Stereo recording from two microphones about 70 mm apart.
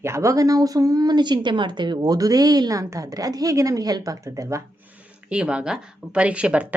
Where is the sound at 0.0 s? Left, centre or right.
Right.